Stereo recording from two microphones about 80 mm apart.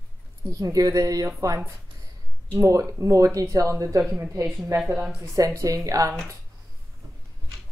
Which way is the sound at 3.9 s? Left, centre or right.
Right.